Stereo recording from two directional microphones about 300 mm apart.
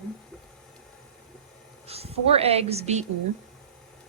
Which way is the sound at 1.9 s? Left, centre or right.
Centre.